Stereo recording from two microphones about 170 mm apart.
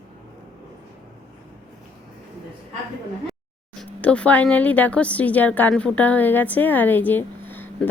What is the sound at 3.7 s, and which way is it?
Speech, 5° left (ahead or behind).